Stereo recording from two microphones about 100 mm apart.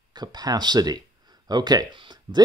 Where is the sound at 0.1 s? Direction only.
45° right (ahead or behind).